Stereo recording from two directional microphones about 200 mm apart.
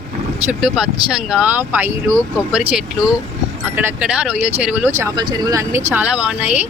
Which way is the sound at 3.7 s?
5° right (ahead or behind).